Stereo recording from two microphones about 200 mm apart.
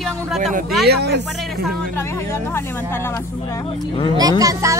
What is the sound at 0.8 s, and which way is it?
Speech, 55° right (ahead or behind).